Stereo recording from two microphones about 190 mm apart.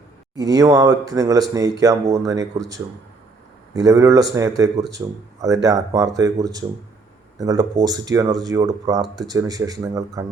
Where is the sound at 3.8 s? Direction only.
15° right (ahead or behind).